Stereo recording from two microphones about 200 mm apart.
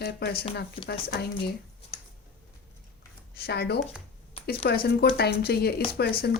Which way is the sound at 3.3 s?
55° left (ahead or behind).